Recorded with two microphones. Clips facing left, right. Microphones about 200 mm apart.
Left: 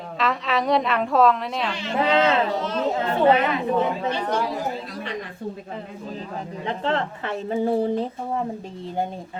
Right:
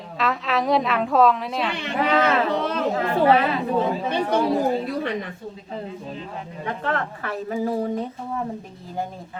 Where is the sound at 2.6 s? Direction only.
60° right (ahead or behind).